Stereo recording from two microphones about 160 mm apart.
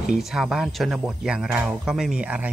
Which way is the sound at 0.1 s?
5° right (ahead or behind).